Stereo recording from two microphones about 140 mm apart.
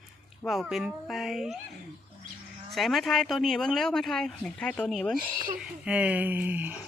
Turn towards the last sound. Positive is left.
turn(degrees=-10)  # may be behind; listen again after turning